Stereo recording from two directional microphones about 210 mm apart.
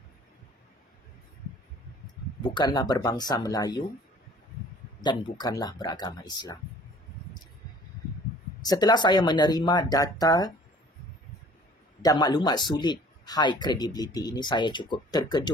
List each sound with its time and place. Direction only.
2.4 s speech: 20° left (ahead or behind)
5.0 s speech: 20° left (ahead or behind)
8.6 s speech: 20° left (ahead or behind)
12.0 s speech: 20° left (ahead or behind)